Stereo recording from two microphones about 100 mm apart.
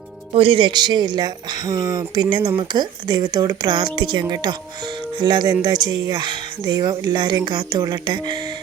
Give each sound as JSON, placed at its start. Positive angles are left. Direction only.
{"t": 0.3, "sound": "speech", "side_deg": -60}